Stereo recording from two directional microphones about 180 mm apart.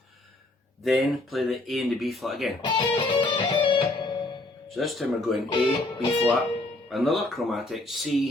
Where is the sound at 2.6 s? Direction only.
25° left (ahead or behind).